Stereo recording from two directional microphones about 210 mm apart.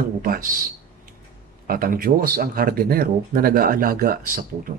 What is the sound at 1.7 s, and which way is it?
Speech, 45° right (ahead or behind).